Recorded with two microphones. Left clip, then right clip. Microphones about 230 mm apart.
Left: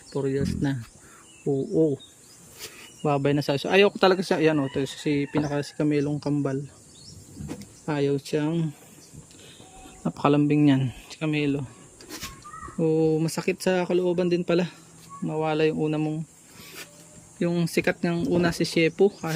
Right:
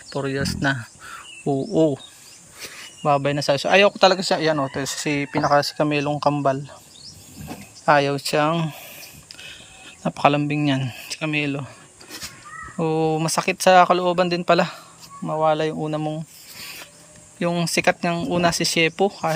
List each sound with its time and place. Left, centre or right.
0.3 s speech: centre
2.7 s speech: centre
7.9 s speech: centre
9.8 s speech: centre
12.8 s speech: centre
17.4 s speech: centre